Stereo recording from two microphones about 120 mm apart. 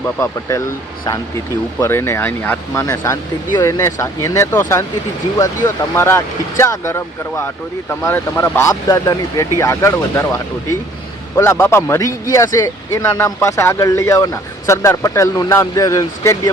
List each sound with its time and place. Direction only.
0.0 s speech: 25° left (ahead or behind)
1.8 s speech: 20° left (ahead or behind)
2.8 s speech: 25° left (ahead or behind)